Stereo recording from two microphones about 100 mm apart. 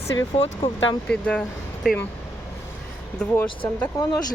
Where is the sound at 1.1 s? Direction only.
10° left (ahead or behind).